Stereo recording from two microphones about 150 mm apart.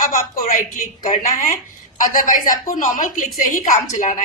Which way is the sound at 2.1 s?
65° left (ahead or behind).